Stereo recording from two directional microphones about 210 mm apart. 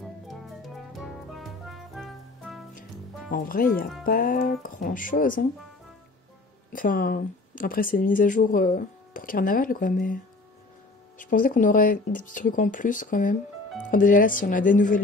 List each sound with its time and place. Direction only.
0.0 s music: centre (ahead or behind)
3.3 s speech: 40° left (ahead or behind)
6.7 s speech: 40° left (ahead or behind)
11.1 s speech: 40° left (ahead or behind)